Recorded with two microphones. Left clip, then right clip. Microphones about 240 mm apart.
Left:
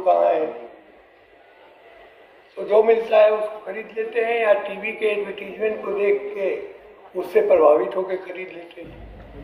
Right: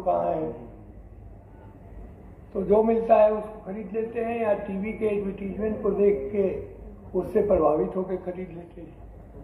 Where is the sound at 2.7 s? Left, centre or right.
Left.